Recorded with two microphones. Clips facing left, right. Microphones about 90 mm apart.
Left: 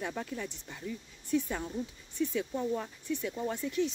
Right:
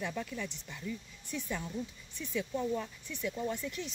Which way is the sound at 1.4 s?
30° left (ahead or behind).